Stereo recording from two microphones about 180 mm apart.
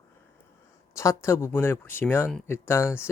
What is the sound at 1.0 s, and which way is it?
Speech, 15° left (ahead or behind).